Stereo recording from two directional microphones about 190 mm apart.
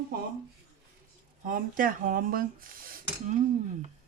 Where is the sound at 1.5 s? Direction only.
45° right (ahead or behind).